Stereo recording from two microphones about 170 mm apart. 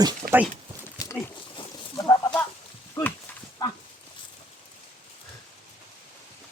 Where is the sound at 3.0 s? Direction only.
10° left (ahead or behind).